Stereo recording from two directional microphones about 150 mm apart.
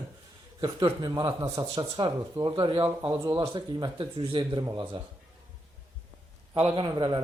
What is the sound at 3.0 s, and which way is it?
Speech, 20° right (ahead or behind).